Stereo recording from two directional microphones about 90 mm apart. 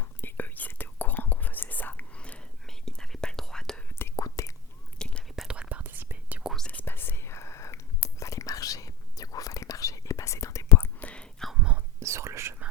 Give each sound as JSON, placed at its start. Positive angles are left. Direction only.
{"t": 0.0, "sound": "whispering", "side_deg": 25}
{"t": 2.6, "sound": "whispering", "side_deg": 5}
{"t": 4.1, "sound": "whispering", "side_deg": 35}
{"t": 4.9, "sound": "whispering", "side_deg": 10}
{"t": 5.4, "sound": "whispering", "side_deg": -10}
{"t": 6.7, "sound": "whispering", "side_deg": 20}
{"t": 11.0, "sound": "whispering", "side_deg": 10}
{"t": 11.9, "sound": "whispering", "side_deg": -30}